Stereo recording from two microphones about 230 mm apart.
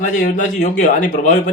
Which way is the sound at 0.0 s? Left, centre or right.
Left.